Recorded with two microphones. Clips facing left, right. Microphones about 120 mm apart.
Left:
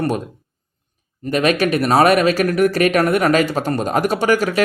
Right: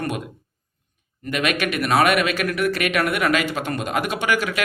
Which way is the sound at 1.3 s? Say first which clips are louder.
Left 7 dB; 35° left (ahead or behind).